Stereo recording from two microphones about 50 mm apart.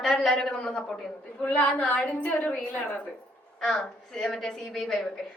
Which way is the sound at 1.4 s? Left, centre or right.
Left.